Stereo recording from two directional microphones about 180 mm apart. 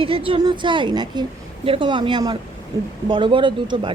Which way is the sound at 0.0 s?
30° right (ahead or behind).